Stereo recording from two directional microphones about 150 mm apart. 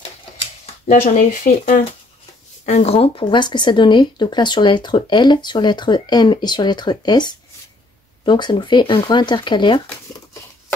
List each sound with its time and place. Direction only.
0.8 s speech: 60° left (ahead or behind)
2.6 s speech: 45° left (ahead or behind); by 9.8 s 30° left (ahead or behind)